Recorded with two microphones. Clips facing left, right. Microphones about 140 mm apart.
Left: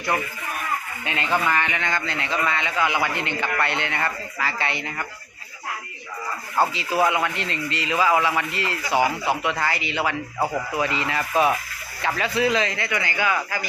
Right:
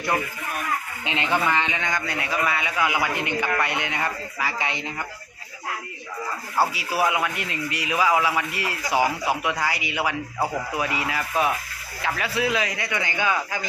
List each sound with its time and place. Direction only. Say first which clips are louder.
1.0 s a man's voice: even; 20° right (ahead or behind)
6.6 s a man's voice: left 2 dB; 10° right (ahead or behind)
11.2 s a man's voice: left 5 dB; centre (ahead or behind); by 13.7 s 20° right (ahead or behind)